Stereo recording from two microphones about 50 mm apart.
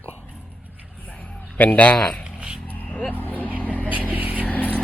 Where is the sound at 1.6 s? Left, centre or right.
Left.